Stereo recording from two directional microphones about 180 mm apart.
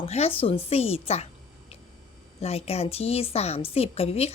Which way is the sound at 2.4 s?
35° left (ahead or behind).